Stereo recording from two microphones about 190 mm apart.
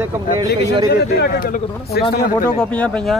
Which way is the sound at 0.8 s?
55° left (ahead or behind).